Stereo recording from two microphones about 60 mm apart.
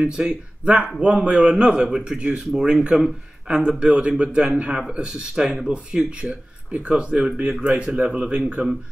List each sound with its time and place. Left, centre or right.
0.0 s a man's voice: centre